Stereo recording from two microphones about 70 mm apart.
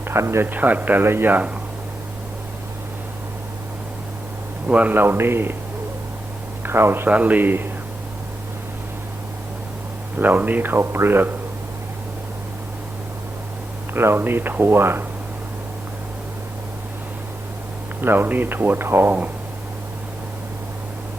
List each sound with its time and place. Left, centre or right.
0.1 s speech: right
0.4 s speech: right
4.7 s speech: right
6.6 s speech: right
7.1 s speech: right
10.2 s speech: right
13.9 s speech: right
18.0 s speech: right